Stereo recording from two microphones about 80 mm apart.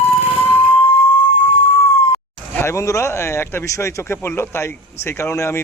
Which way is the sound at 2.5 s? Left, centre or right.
Left.